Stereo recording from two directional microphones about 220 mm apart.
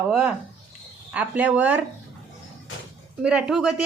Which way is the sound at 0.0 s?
5° right (ahead or behind).